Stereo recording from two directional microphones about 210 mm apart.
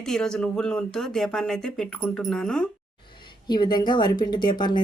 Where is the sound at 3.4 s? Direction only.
20° left (ahead or behind).